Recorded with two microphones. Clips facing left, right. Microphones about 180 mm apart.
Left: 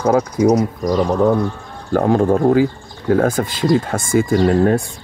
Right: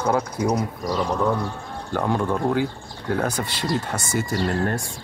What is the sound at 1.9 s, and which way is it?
Speech, 45° left (ahead or behind).